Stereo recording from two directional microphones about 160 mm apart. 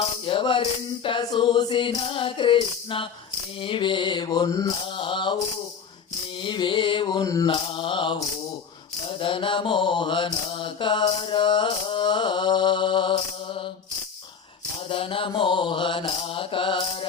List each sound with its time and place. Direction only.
0.3 s music: 30° left (ahead or behind)
1.0 s mantra: 25° left (ahead or behind)
6.4 s mantra: 30° left (ahead or behind)
9.2 s mantra: 30° left (ahead or behind)
14.8 s mantra: 35° left (ahead or behind)